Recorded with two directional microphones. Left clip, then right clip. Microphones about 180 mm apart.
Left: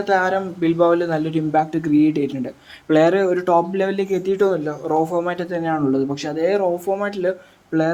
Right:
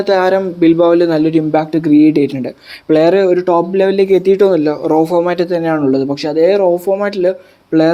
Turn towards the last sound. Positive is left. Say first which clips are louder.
# right 9 dB
turn(degrees=-30)  # may be behind; listen again after turning